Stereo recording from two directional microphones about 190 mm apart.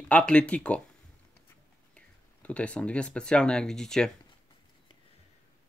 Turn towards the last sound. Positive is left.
turn(degrees=5)  # may be behind; listen again after turning